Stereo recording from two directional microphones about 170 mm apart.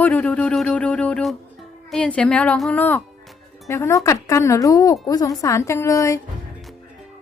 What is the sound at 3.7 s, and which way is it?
A woman's voice, 15° left (ahead or behind).